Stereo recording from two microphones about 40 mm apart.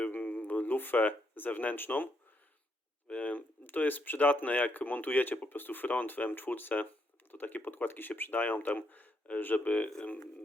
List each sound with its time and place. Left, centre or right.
0.1 s a sound: left
1.7 s speech: left
3.1 s speech: left
3.7 s speech: left